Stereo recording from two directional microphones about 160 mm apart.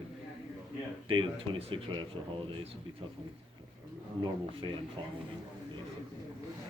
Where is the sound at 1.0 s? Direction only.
30° right (ahead or behind).